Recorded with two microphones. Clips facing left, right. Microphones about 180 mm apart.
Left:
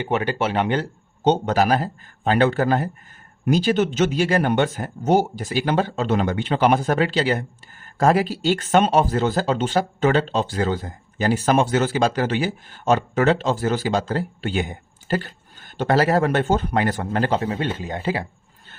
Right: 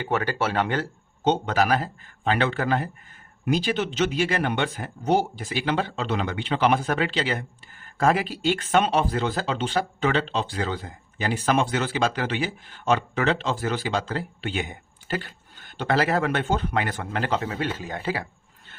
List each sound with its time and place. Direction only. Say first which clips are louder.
0.0 s speech: left 3 dB; 20° left (ahead or behind)
1.2 s speech: left 4 dB; 40° left (ahead or behind)